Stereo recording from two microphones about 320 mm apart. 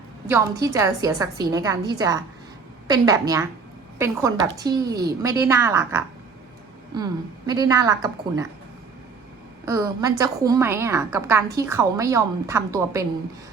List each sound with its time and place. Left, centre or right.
0.3 s a woman's voice: centre
9.6 s a woman's voice: centre